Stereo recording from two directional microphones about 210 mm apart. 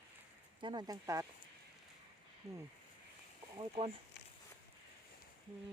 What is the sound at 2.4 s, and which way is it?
Speech, centre (ahead or behind).